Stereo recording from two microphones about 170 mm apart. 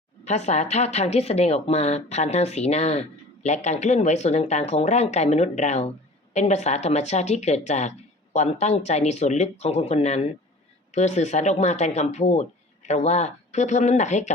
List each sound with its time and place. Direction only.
0.3 s speech: 40° left (ahead or behind)